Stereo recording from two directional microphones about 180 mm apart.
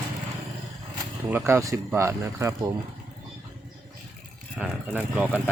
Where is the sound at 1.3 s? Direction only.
15° right (ahead or behind).